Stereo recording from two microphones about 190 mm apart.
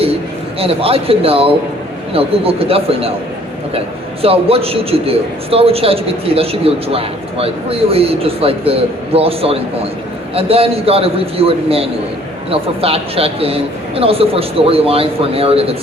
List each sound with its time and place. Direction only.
0.6 s a man's voice: 30° right (ahead or behind)
4.2 s a man's voice: 30° right (ahead or behind)